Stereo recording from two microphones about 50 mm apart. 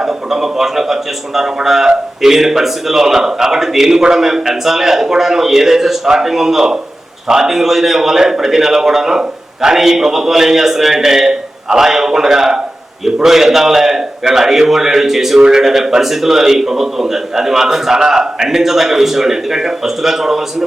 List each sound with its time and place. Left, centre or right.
0.0 s a man's voice: centre